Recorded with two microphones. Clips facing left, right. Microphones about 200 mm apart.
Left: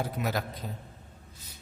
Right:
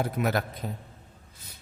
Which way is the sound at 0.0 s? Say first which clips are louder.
Right 4 dB; 60° right (ahead or behind).